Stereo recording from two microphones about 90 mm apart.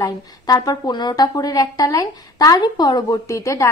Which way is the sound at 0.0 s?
45° left (ahead or behind).